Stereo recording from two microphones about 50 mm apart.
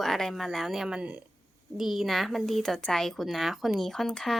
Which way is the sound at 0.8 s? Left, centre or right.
Centre.